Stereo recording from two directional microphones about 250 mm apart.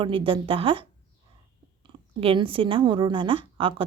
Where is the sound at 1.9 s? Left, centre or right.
Centre.